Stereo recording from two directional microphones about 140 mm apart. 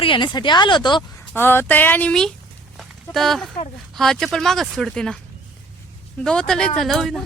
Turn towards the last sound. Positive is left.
turn(degrees=0)  # may be behind; listen again after turning